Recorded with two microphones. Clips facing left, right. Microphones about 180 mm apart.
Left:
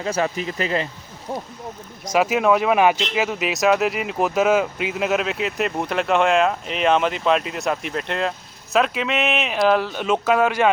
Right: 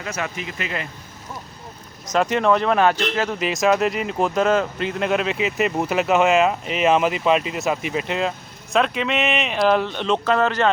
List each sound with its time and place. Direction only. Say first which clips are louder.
0.0 s speech: left 6 dB; 35° left (ahead or behind)
1.3 s speech: left 8 dB; 60° left (ahead or behind)
2.0 s speech: left 1 dB; 5° left (ahead or behind)